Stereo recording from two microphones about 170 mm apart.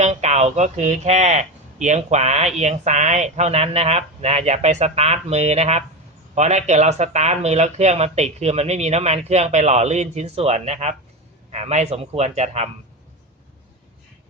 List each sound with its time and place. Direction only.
0.0 s speech: 40° right (ahead or behind)